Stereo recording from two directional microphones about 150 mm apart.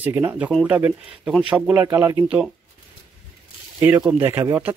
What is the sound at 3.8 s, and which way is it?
Speech, 15° right (ahead or behind).